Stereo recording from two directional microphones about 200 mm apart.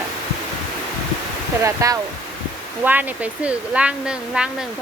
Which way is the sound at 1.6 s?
15° right (ahead or behind).